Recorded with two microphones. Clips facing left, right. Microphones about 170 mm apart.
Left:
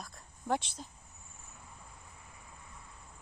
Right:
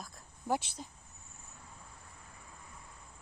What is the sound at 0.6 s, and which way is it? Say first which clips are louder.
Speech: right 1 dB; 55° right (ahead or behind).